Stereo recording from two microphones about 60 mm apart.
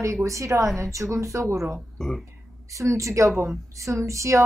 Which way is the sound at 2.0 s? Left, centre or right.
Centre.